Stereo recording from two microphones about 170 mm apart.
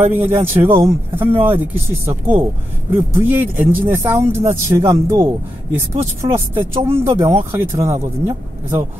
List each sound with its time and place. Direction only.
0.1 s speech: 15° right (ahead or behind)
3.5 s speech: 50° right (ahead or behind)
3.9 s speech: 15° right (ahead or behind)